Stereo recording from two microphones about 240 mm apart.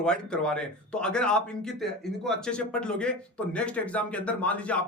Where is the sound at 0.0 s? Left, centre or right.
Centre.